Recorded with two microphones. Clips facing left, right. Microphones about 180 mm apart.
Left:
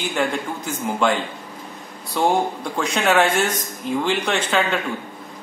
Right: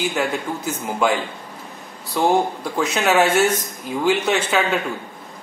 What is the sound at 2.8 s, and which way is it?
A man's voice, 5° right (ahead or behind).